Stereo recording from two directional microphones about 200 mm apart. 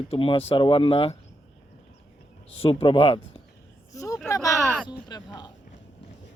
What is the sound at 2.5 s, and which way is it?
Speech, 30° left (ahead or behind).